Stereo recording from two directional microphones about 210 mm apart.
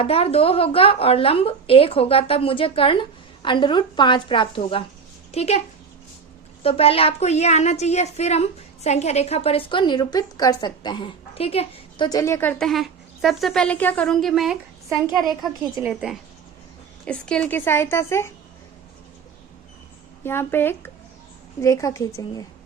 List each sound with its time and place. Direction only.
0.0 s a woman's voice: 30° left (ahead or behind); by 14.6 s centre (ahead or behind)
15.7 s a woman's voice: 5° right (ahead or behind); by 18.3 s 10° left (ahead or behind)
20.2 s a woman's voice: 10° left (ahead or behind)